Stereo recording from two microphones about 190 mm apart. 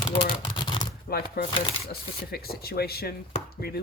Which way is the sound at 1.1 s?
55° left (ahead or behind).